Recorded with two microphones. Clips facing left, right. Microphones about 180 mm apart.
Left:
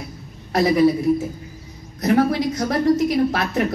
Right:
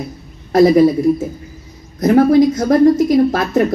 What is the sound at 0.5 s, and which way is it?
Speech, 45° right (ahead or behind).